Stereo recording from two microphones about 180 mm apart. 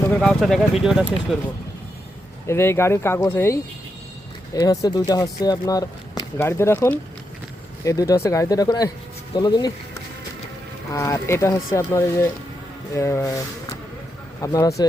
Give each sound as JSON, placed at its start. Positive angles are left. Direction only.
{"t": 0.1, "sound": "speech", "side_deg": 5}
{"t": 2.5, "sound": "speech", "side_deg": 15}
{"t": 10.9, "sound": "speech", "side_deg": 15}
{"t": 14.4, "sound": "speech", "side_deg": 15}